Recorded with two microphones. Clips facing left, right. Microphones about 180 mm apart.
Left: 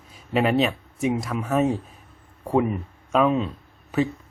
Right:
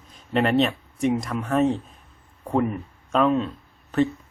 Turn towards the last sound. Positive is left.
turn(degrees=10)  # may be behind; listen again after turning